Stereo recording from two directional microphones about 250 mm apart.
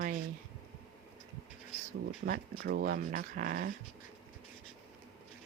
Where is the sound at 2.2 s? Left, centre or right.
Right.